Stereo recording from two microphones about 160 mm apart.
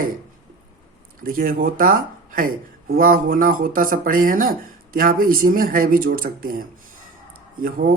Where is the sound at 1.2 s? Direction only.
65° right (ahead or behind).